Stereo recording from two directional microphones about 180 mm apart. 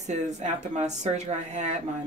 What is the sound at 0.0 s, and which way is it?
Speech, 40° right (ahead or behind).